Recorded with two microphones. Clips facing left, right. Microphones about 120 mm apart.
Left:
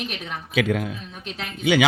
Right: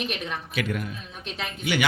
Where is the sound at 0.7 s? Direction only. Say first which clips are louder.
Left 6 dB; 90° left.